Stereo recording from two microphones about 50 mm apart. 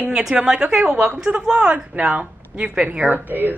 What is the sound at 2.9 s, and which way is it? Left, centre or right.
Speech, right.